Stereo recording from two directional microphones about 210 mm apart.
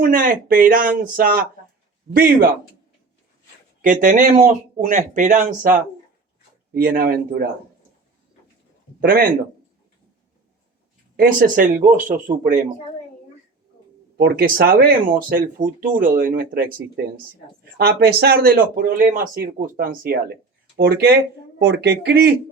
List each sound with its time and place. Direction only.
0.0 s speech: 40° right (ahead or behind)
3.8 s speech: 40° right (ahead or behind)
9.0 s speech: 45° right (ahead or behind)
11.2 s speech: 40° right (ahead or behind)
14.2 s speech: 45° right (ahead or behind)